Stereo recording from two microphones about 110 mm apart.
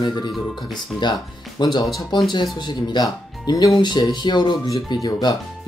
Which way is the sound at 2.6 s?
40° left (ahead or behind).